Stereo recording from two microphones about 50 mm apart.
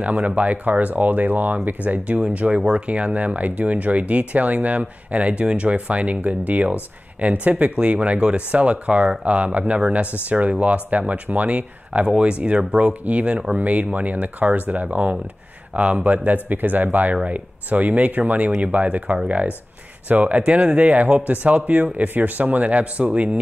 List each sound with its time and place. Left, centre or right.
0.0 s speech: right
2.3 s speech: right